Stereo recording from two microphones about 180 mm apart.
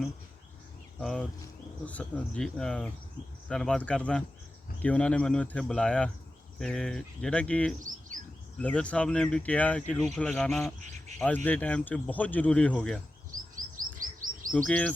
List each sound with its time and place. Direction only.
0.9 s speech: 5° left (ahead or behind)
13.7 s chirp: 50° right (ahead or behind)
14.5 s speech: 5° left (ahead or behind)